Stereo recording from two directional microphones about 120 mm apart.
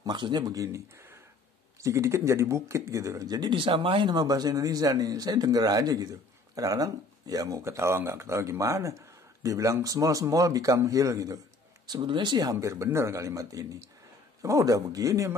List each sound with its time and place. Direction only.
0.0 s a man's voice: 35° right (ahead or behind)